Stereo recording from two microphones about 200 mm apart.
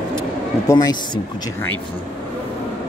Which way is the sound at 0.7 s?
20° left (ahead or behind).